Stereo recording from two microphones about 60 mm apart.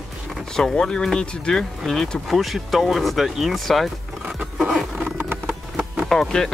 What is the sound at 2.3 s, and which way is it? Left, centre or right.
Speech, centre.